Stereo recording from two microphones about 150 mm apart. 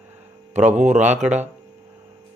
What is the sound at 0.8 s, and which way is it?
Speech, 50° right (ahead or behind).